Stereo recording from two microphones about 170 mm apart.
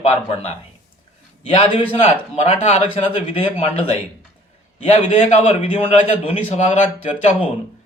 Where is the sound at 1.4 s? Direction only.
35° left (ahead or behind).